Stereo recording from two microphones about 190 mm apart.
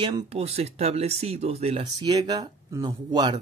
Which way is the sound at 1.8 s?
20° right (ahead or behind).